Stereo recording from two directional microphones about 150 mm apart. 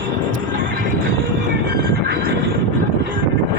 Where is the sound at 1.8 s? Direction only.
85° right.